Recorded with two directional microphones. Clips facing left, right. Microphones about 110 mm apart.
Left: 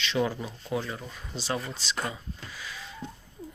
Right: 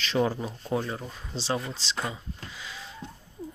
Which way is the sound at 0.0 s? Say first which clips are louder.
Right 2 dB; 35° right (ahead or behind).